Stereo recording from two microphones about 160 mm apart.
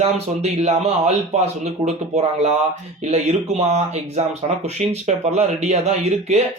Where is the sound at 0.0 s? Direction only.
40° right (ahead or behind).